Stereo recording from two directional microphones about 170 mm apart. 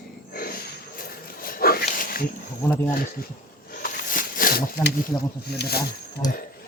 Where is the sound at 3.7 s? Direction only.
55° left (ahead or behind).